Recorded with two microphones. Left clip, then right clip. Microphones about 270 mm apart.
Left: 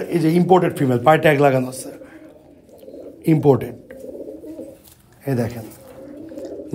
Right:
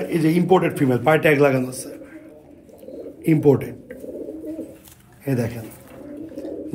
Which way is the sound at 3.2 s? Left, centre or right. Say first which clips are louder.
Left 1 dB; left.